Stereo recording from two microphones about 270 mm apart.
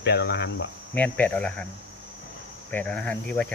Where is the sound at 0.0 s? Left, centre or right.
Left.